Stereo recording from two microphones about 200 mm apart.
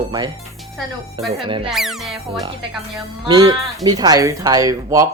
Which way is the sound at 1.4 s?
25° right (ahead or behind).